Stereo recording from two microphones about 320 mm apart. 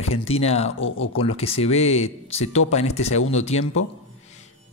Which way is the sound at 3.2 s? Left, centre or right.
Left.